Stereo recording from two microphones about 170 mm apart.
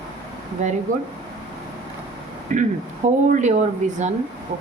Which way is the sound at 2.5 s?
50° right (ahead or behind).